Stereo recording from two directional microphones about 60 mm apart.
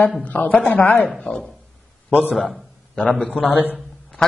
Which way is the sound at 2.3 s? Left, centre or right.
Centre.